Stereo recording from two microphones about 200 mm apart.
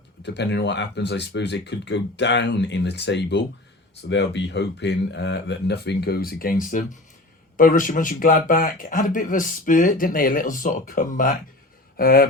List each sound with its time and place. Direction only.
0.2 s speech: 60° left (ahead or behind)